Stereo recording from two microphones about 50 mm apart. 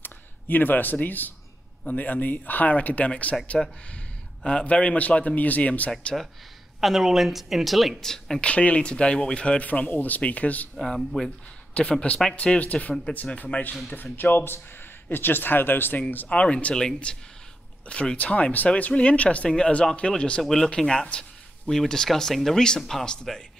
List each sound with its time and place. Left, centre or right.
0.0 s speech: left
4.5 s speech: left
6.8 s a woman's voice: centre
8.0 s speech: centre
8.4 s speech: left
10.8 s speech: centre
11.2 s speech: left
14.1 s speech: left
16.3 s speech: left
20.4 s a woman's voice: centre
20.7 s a woman's voice: centre